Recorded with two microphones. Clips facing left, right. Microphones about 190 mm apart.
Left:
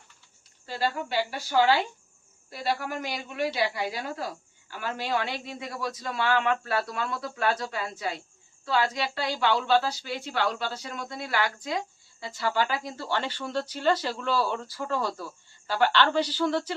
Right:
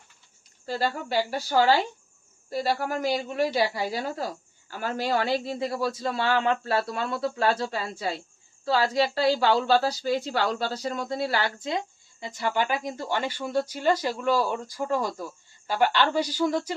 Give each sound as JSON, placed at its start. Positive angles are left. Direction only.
{"t": 0.6, "sound": "a man's voice", "side_deg": -40}